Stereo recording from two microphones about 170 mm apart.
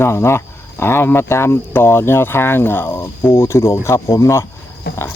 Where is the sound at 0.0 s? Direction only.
15° left (ahead or behind).